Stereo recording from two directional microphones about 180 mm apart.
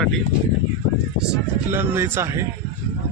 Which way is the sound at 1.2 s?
10° right (ahead or behind).